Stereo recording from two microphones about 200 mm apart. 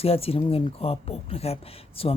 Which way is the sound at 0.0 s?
30° left (ahead or behind).